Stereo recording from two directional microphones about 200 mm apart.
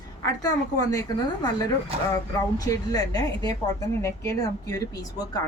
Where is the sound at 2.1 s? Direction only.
20° left (ahead or behind).